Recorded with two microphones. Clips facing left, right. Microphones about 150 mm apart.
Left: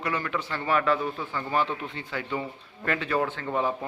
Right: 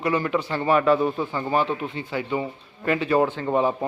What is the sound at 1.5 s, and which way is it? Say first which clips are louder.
A man's voice: right 3 dB; 15° right (ahead or behind).